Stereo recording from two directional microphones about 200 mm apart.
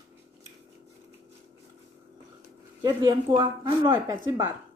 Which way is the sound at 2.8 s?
25° right (ahead or behind).